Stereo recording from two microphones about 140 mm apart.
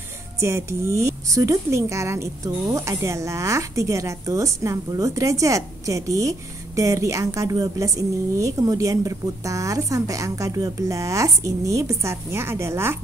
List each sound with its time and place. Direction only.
0.4 s speech: 20° right (ahead or behind)